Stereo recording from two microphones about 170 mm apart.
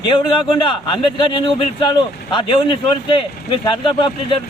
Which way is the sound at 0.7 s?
30° left (ahead or behind).